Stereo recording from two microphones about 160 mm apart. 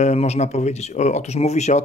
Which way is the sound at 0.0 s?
45° left (ahead or behind).